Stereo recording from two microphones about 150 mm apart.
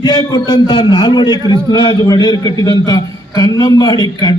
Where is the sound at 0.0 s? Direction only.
30° left (ahead or behind).